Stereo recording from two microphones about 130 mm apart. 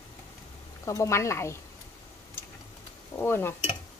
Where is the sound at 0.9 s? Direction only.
20° left (ahead or behind).